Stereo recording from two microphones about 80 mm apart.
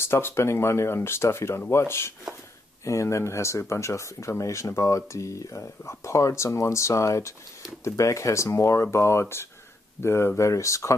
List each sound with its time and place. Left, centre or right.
0.0 s speech: left